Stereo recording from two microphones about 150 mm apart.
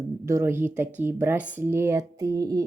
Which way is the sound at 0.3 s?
20° right (ahead or behind).